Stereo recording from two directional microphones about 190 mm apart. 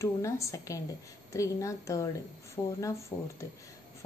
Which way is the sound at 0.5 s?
15° left (ahead or behind).